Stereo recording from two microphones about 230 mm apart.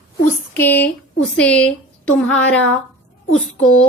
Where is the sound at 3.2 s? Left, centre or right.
Left.